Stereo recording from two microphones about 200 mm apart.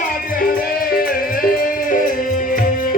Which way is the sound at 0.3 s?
45° left (ahead or behind).